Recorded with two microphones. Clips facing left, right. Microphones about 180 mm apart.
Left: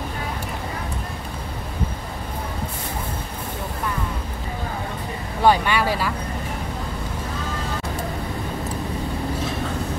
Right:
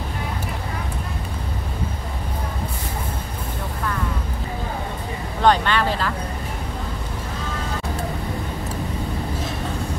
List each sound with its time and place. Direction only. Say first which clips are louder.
5.4 s vehicle: even; 10° left (ahead or behind)